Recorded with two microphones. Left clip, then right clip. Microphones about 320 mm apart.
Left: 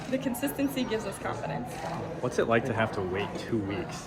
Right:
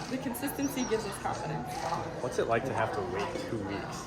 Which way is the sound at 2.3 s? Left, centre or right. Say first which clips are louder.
Left 3 dB; left.